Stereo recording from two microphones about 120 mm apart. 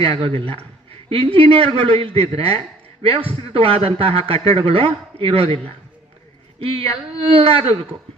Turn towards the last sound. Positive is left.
turn(degrees=-50)  # may be behind; listen again after turning